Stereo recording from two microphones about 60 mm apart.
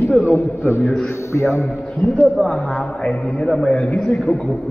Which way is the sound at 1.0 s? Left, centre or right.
Left.